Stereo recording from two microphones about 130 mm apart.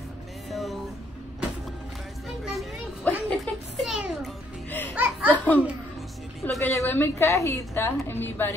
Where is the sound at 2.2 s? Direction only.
Centre (ahead or behind).